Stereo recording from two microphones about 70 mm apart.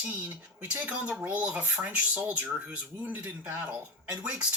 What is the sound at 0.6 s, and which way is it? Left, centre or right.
Speech, right.